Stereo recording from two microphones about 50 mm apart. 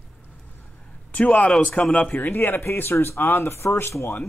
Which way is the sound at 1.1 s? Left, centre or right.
Left.